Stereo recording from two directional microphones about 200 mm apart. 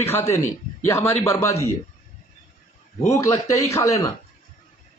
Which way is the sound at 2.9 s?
15° left (ahead or behind).